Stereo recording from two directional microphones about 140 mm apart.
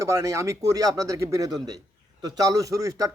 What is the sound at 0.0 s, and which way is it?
Speech, 20° right (ahead or behind).